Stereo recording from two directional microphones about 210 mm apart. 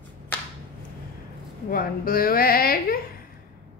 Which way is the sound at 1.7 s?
45° left (ahead or behind).